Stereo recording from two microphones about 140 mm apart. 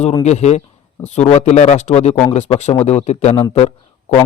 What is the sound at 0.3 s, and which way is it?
Speech, 55° left (ahead or behind).